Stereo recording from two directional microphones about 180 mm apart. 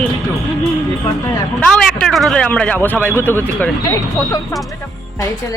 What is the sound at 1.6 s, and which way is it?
Speech, centre (ahead or behind).